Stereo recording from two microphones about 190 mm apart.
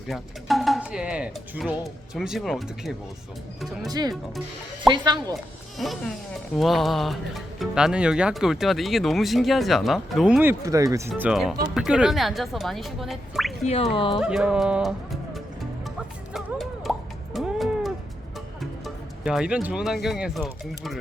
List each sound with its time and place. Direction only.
0.1 s speech: centre (ahead or behind)
3.8 s speech: 20° right (ahead or behind)
5.3 s speech: centre (ahead or behind); by 11.1 s 15° right (ahead or behind)
11.1 s speech: 5° right (ahead or behind)
13.7 s speech: 30° left (ahead or behind)
14.2 s speech: 5° right (ahead or behind)
16.3 s music: centre (ahead or behind)
19.2 s speech: 5° right (ahead or behind)